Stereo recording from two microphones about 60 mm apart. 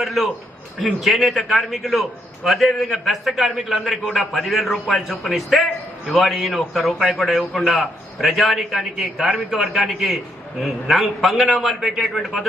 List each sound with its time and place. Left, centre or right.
0.0 s a man's voice: centre